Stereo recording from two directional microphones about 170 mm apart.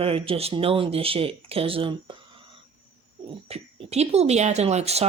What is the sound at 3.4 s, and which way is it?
Speech, 40° right (ahead or behind).